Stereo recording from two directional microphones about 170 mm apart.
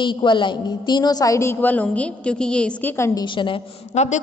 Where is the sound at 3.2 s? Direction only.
30° left (ahead or behind).